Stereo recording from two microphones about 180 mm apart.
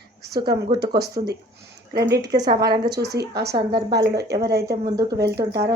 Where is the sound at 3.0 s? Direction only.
65° right (ahead or behind).